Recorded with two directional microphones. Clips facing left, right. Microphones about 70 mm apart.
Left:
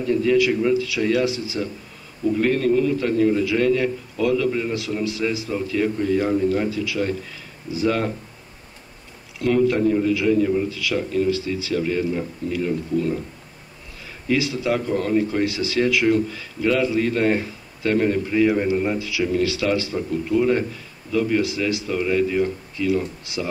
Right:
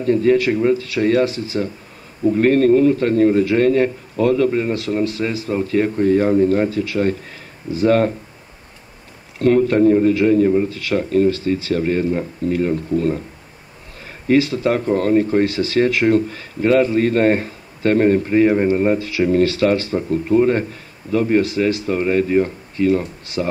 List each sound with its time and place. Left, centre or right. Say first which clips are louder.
0.0 s speech: right 3 dB; right
9.4 s speech: right 5 dB; right
14.2 s speech: right 6 dB; right